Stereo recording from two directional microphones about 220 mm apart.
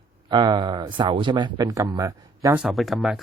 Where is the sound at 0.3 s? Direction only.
20° right (ahead or behind).